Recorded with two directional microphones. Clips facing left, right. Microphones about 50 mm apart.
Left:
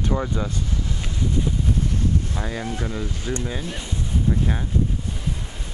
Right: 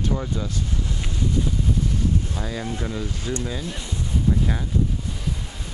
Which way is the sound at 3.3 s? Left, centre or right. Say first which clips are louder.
Left 1 dB; left.